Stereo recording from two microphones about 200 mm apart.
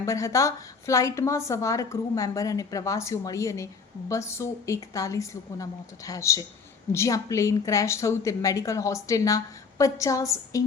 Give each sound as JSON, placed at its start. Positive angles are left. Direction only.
{"t": 0.0, "sound": "a woman's voice", "side_deg": 15}